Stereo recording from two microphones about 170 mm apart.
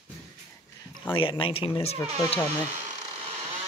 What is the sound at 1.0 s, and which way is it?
Speech, 30° left (ahead or behind).